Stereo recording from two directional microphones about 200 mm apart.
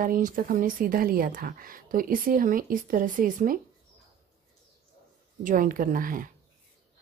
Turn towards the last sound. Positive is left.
turn(degrees=-45)  # may be behind; listen again after turning